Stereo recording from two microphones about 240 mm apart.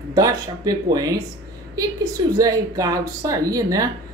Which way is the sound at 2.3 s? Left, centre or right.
Centre.